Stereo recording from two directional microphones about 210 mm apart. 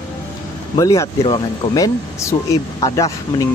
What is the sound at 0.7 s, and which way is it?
Speech, 15° left (ahead or behind).